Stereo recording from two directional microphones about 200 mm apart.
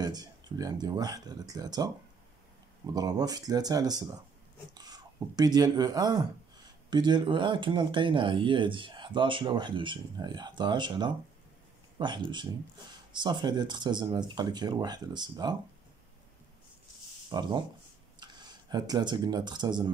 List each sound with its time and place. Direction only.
0.0 s speech: 20° right (ahead or behind)
2.9 s speech: 20° right (ahead or behind)
17.3 s speech: 20° right (ahead or behind)